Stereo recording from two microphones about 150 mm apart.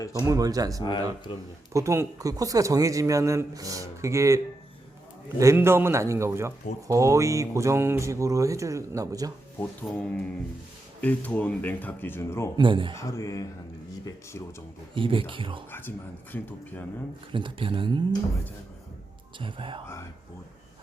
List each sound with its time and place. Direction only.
0.0 s speech: 20° left (ahead or behind)
0.3 s speech: 25° right (ahead or behind)
1.3 s speech: 35° left (ahead or behind)
1.7 s speech: 20° right (ahead or behind)
5.4 s a man's voice: 20° right (ahead or behind)
9.6 s speech: 10° left (ahead or behind)
12.5 s speech: 35° right (ahead or behind)
13.0 s speech: 20° left (ahead or behind)
14.9 s speech: 35° right (ahead or behind)
16.3 s speech: 10° left (ahead or behind)
17.3 s speech: 35° right (ahead or behind)
19.4 s speech: 35° right (ahead or behind)